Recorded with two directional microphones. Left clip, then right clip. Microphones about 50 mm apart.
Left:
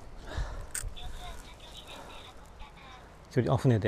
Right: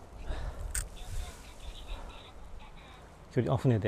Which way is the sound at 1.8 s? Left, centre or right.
Left.